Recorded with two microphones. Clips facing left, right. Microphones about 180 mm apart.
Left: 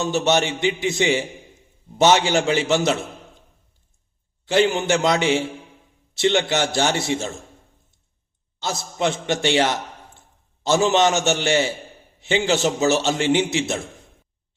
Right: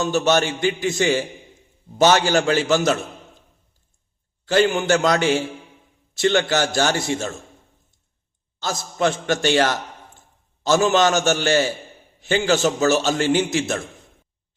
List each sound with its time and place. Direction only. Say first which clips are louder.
0.0 s a man's voice: right 1 dB; 20° left (ahead or behind)
4.4 s a man's voice: right 1 dB; 20° left (ahead or behind)
8.5 s a man's voice: right 1 dB; 20° left (ahead or behind)